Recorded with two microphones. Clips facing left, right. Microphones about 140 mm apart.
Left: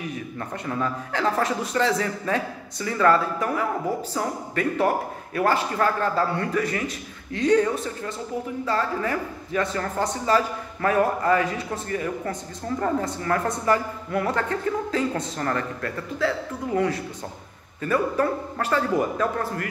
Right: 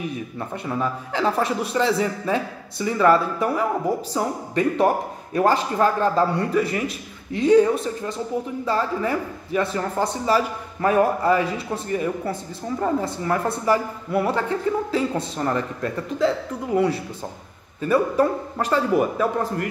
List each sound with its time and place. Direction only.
0.4 s a woman's voice: 15° right (ahead or behind)